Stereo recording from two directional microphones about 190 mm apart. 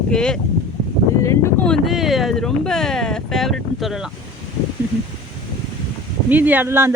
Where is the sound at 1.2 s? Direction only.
15° left (ahead or behind); by 4.1 s centre (ahead or behind).